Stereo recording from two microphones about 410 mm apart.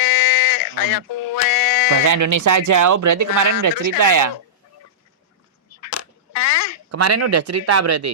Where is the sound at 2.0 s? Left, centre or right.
Right.